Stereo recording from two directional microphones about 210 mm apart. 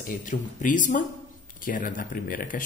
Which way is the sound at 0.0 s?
40° left (ahead or behind).